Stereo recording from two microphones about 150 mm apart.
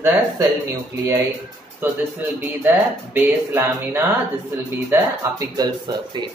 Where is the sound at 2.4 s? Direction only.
15° right (ahead or behind); by 6.0 s 30° right (ahead or behind).